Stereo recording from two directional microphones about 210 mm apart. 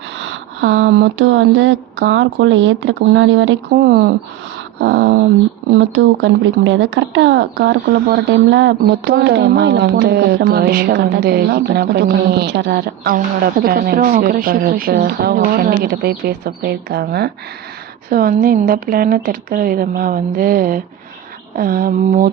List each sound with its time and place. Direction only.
0.2 s speech: 60° right (ahead or behind)
4.8 s speech: 55° right (ahead or behind)